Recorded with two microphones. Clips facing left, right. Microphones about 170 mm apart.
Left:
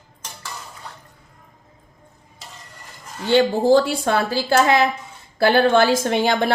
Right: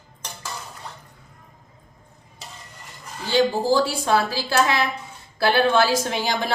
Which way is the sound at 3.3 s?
60° left (ahead or behind).